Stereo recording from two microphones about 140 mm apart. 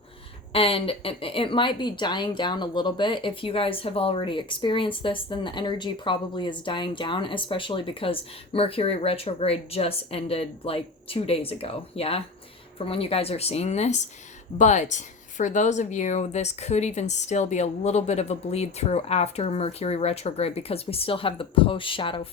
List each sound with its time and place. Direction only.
0.5 s a woman's voice: 40° left (ahead or behind)